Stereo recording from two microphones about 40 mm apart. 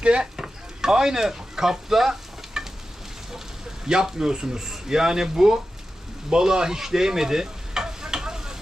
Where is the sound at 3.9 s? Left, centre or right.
Centre.